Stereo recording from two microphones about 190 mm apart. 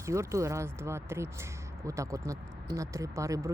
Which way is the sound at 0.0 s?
15° right (ahead or behind).